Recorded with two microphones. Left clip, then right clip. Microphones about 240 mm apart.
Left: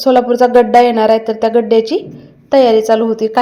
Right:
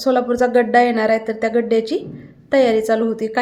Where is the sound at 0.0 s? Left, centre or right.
Centre.